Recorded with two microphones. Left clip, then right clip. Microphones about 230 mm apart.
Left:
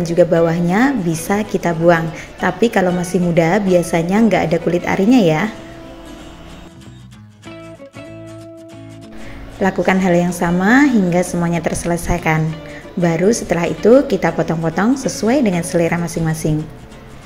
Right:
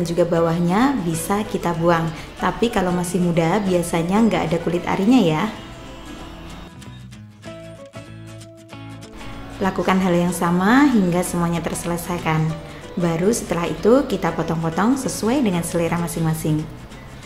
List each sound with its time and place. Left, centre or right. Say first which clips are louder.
0.0 s a woman's voice: left 6 dB; centre
9.6 s a woman's voice: left 4 dB; centre